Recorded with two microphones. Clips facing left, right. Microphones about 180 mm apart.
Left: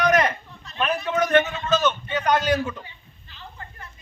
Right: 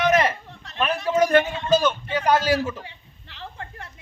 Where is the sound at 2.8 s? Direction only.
75° right (ahead or behind).